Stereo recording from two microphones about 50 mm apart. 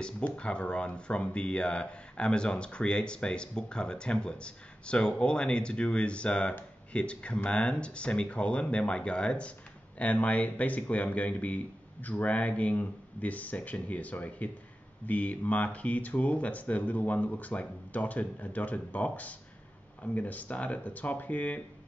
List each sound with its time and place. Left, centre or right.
0.2 s speech: left